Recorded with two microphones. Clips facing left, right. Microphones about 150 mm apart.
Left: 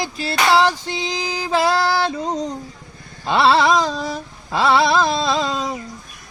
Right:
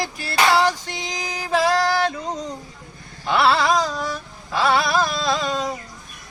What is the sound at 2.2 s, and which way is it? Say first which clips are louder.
Speech: left 5 dB; 35° left (ahead or behind).